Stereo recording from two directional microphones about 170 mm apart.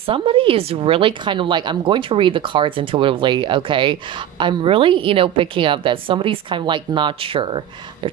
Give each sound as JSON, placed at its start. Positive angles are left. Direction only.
{"t": 0.0, "sound": "a woman's voice", "side_deg": -30}